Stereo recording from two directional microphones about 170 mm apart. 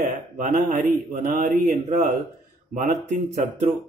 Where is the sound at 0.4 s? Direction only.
50° right (ahead or behind).